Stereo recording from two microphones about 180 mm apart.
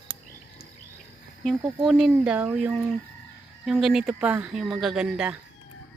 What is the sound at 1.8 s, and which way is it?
Speech, centre (ahead or behind).